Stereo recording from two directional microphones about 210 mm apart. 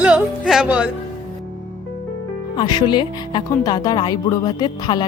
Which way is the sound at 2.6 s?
20° left (ahead or behind).